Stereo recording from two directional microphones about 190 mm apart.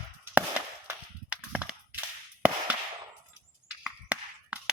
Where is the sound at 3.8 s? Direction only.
5° right (ahead or behind).